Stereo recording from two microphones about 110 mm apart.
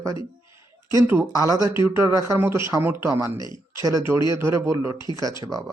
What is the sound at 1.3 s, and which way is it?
Speech, 35° right (ahead or behind).